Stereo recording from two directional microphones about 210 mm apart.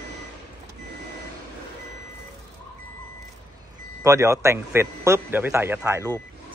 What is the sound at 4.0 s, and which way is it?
A man's voice, 15° right (ahead or behind).